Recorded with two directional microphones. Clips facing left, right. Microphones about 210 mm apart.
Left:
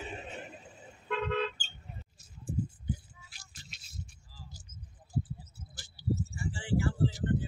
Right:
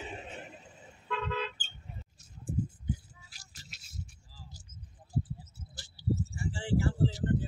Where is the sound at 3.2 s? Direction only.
40° right (ahead or behind).